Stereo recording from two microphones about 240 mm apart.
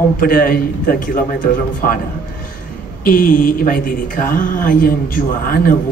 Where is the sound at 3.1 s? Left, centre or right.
Left.